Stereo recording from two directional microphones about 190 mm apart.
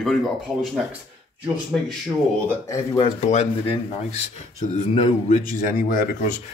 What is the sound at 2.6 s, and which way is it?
Speech, 15° left (ahead or behind).